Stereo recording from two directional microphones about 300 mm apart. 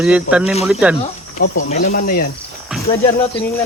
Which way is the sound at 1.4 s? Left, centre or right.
Left.